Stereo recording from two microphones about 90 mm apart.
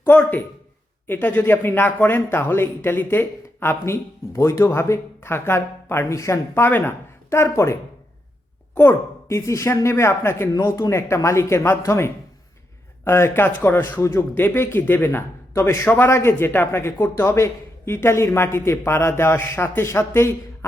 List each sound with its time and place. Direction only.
0.0 s a man's voice: 20° left (ahead or behind)
8.7 s speech: 25° left (ahead or behind)